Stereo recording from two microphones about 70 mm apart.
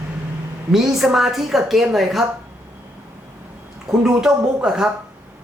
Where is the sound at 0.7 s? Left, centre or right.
Centre.